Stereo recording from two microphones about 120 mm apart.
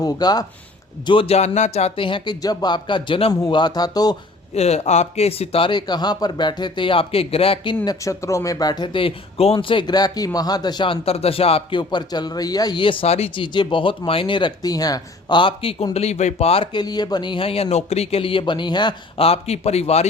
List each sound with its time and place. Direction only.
0.0 s speech: 35° left (ahead or behind)
1.0 s speech: 45° left (ahead or behind)
1.4 s speech: 70° left (ahead or behind)
2.0 s speech: 45° left (ahead or behind)
2.4 s speech: 35° left (ahead or behind)
3.5 s speech: 35° left (ahead or behind)
4.5 s speech: 65° left (ahead or behind); by 7.8 s 45° left (ahead or behind)
7.9 s speech: 25° left (ahead or behind)
11.0 s speech: 55° left (ahead or behind)
16.7 s speech: 35° left (ahead or behind)
19.2 s speech: 60° left (ahead or behind)